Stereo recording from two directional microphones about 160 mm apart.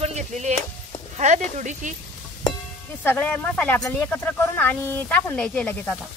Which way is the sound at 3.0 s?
10° left (ahead or behind).